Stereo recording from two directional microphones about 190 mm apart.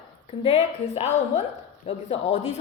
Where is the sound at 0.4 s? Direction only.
35° left (ahead or behind).